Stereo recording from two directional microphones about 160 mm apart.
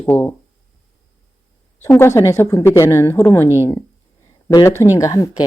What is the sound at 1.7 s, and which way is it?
Speech, 15° left (ahead or behind).